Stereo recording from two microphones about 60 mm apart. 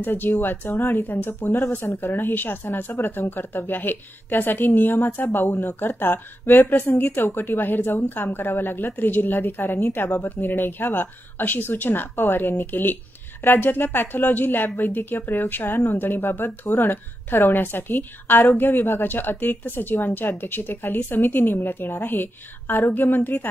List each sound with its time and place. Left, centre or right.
0.0 s speech: left